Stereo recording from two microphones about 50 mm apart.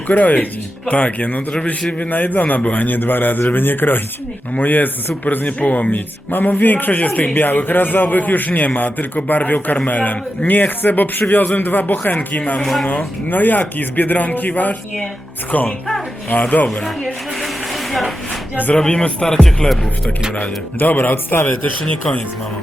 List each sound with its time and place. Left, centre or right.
0.1 s a man's voice: left
16.6 s music: centre
18.5 s a man's voice: left
18.8 s speech: centre
19.2 s music: centre
20.7 s a man's voice: left
21.4 s speech: left